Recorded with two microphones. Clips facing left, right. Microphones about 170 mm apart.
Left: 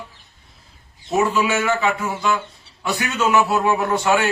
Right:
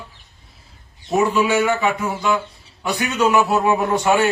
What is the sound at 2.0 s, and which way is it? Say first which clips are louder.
Speech: right 2 dB; centre (ahead or behind).